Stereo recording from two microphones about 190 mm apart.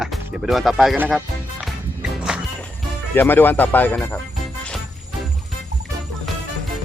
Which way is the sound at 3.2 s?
10° left (ahead or behind).